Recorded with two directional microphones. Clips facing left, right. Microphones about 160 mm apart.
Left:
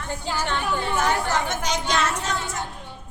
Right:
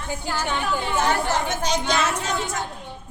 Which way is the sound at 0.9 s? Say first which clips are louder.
Right 2 dB; 30° right (ahead or behind).